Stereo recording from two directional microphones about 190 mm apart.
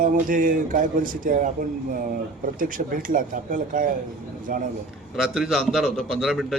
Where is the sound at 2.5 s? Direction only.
45° right (ahead or behind).